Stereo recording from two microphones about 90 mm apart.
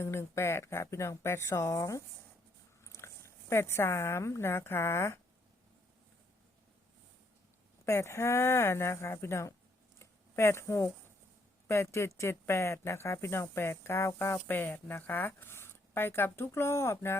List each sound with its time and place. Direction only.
0.0 s speech: 30° left (ahead or behind)
7.9 s speech: 30° left (ahead or behind)
10.0 s a sound: 30° left (ahead or behind)
11.7 s speech: 30° left (ahead or behind)